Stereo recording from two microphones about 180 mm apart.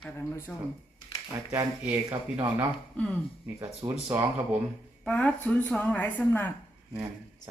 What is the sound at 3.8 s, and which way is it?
Speech, 15° right (ahead or behind).